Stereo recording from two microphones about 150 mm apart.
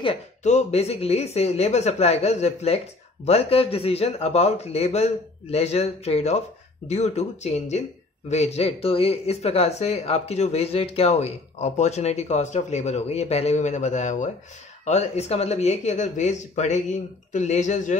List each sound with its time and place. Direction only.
0.0 s speech: 45° left (ahead or behind)